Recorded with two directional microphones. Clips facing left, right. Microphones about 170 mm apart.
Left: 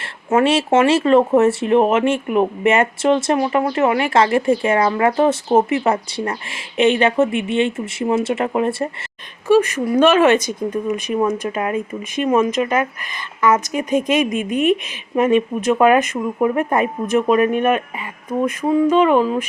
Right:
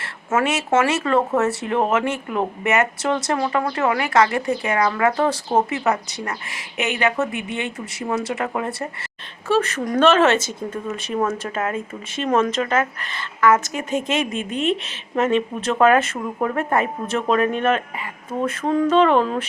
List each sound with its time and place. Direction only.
0.0 s speech: 30° left (ahead or behind)
9.5 s speech: 10° left (ahead or behind)